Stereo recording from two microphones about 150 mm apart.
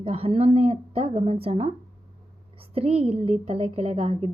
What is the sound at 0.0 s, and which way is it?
A woman's voice, 40° right (ahead or behind).